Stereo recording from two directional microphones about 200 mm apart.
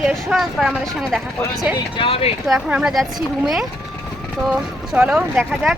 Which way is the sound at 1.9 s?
30° left (ahead or behind).